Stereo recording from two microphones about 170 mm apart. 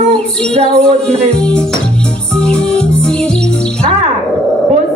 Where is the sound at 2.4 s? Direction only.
5° left (ahead or behind).